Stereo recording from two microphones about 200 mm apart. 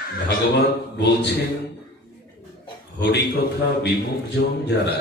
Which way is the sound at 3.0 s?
55° left (ahead or behind).